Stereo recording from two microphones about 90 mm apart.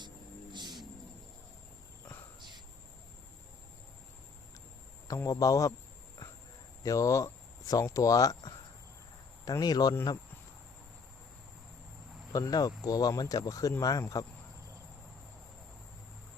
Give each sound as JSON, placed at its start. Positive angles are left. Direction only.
{"t": 0.5, "sound": "cricket", "side_deg": -55}
{"t": 5.0, "sound": "speech", "side_deg": 40}
{"t": 6.8, "sound": "speech", "side_deg": 40}
{"t": 9.4, "sound": "speech", "side_deg": 45}
{"t": 12.3, "sound": "speech", "side_deg": 45}